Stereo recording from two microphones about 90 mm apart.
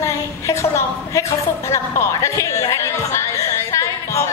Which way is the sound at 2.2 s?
35° left (ahead or behind).